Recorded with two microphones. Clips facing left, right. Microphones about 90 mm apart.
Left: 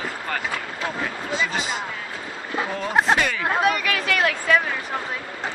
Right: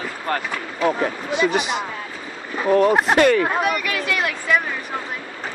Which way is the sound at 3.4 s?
5° right (ahead or behind).